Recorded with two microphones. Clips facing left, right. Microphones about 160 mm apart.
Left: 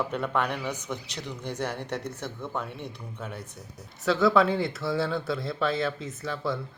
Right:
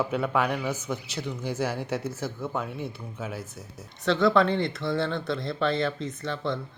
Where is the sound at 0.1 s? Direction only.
5° right (ahead or behind).